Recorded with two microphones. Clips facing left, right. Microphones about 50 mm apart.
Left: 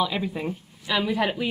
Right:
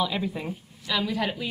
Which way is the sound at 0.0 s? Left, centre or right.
Centre.